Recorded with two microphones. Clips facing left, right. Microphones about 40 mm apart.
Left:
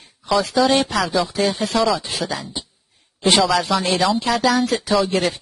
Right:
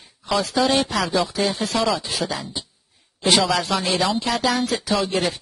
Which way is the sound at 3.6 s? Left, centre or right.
Centre.